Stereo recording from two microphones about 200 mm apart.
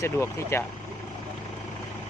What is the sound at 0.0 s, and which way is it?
Speech, 15° left (ahead or behind).